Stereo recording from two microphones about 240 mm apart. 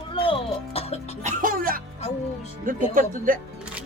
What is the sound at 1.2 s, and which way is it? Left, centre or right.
Speech, right.